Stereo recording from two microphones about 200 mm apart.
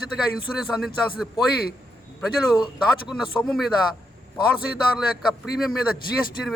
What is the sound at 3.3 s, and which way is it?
Speech, centre (ahead or behind).